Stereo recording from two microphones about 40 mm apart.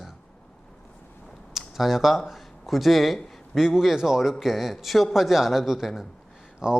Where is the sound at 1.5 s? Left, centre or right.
Centre.